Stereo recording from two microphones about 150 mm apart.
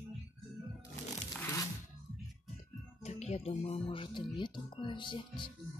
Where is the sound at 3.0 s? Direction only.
50° left (ahead or behind); by 5.2 s 35° left (ahead or behind).